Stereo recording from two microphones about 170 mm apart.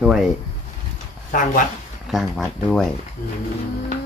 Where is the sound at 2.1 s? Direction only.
Centre (ahead or behind).